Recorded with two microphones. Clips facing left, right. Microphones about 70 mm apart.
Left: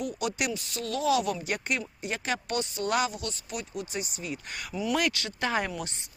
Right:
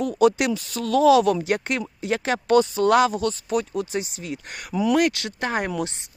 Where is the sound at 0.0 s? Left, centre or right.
Right.